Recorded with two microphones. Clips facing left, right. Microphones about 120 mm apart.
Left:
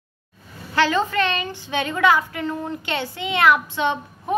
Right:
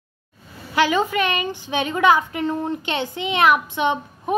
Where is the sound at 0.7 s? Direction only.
15° right (ahead or behind).